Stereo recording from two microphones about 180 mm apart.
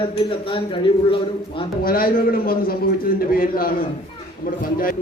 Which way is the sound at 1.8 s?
55° left (ahead or behind).